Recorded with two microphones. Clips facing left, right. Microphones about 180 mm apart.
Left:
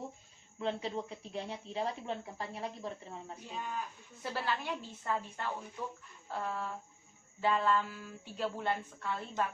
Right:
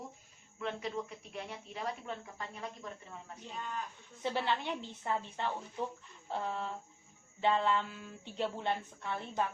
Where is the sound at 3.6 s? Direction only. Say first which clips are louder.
Left 1 dB; 10° left (ahead or behind).